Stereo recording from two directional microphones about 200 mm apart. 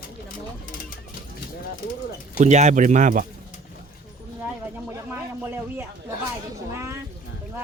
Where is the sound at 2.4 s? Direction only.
35° right (ahead or behind).